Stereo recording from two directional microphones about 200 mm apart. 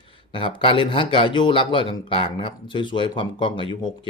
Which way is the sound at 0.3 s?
25° left (ahead or behind).